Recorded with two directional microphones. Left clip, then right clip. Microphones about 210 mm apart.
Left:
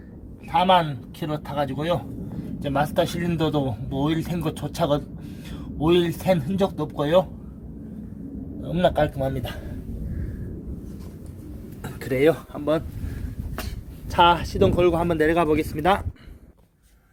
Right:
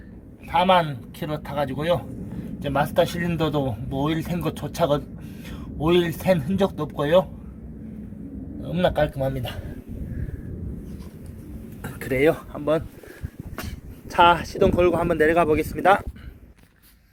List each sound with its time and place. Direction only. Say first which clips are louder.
0.5 s speech: even; 5° right (ahead or behind)
8.6 s speech: left 1 dB; centre (ahead or behind)
11.8 s speech: even; 5° left (ahead or behind)
14.1 s speech: right 1 dB; centre (ahead or behind)